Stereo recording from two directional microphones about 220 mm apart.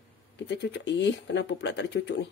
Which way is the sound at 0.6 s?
50° left (ahead or behind).